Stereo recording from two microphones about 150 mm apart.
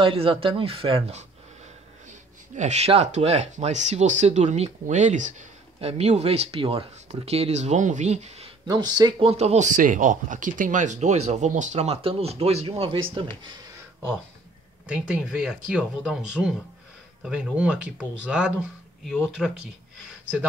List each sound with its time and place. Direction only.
0.0 s speech: 35° right (ahead or behind)
2.5 s speech: 50° right (ahead or behind)
5.8 s speech: 40° right (ahead or behind)
8.6 s speech: 25° right (ahead or behind)
9.3 s speech: 45° right (ahead or behind)
14.9 s speech: 5° right (ahead or behind)